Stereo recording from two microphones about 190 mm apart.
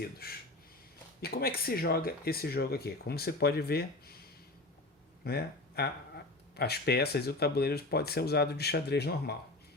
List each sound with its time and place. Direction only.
0.0 s speech: 55° left (ahead or behind)